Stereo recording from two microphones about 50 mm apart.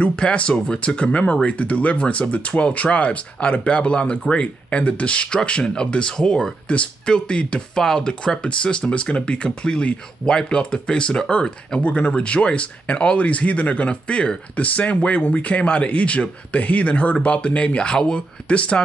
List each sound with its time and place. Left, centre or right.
0.0 s speech: left
11.8 s speech: left
14.6 s speech: left